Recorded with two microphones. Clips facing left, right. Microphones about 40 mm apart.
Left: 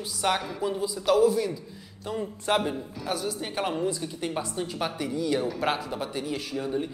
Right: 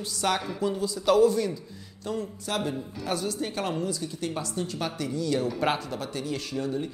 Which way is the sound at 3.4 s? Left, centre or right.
Centre.